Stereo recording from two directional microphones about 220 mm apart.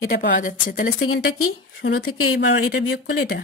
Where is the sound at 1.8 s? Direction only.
50° left (ahead or behind).